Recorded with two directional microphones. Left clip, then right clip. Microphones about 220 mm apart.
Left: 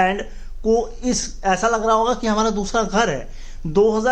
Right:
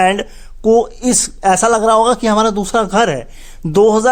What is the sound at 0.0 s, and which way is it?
Speech, 50° right (ahead or behind).